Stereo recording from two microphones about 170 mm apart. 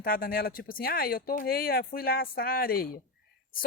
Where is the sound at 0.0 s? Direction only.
60° left (ahead or behind).